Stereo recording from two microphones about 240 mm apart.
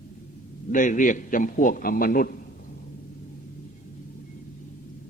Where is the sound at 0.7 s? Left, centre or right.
Left.